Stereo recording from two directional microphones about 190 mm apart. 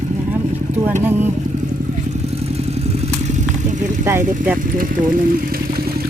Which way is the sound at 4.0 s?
10° right (ahead or behind).